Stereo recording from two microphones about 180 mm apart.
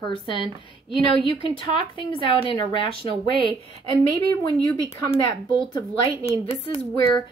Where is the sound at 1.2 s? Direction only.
30° left (ahead or behind).